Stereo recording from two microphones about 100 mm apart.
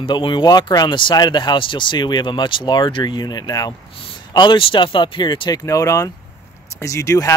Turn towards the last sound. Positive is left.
turn(degrees=30)  # may be behind; listen again after turning